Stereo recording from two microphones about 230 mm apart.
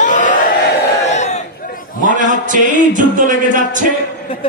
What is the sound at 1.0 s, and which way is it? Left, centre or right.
Crowd, left.